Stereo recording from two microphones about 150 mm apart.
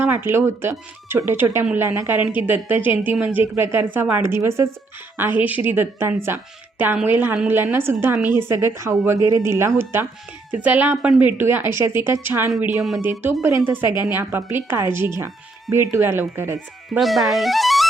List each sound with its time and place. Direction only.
0.0 s a woman's voice: 15° right (ahead or behind)
17.0 s speech: centre (ahead or behind)